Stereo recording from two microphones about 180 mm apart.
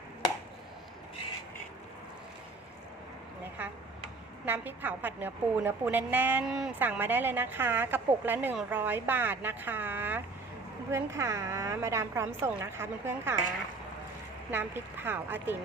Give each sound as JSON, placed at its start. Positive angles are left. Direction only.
{"t": 4.4, "sound": "a woman's voice", "side_deg": -10}
{"t": 14.5, "sound": "a woman's voice", "side_deg": -10}